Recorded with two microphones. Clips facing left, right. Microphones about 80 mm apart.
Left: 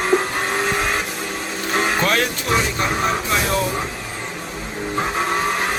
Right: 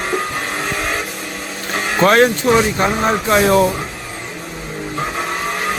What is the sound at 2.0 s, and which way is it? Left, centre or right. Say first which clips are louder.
Speech: right 8 dB; right.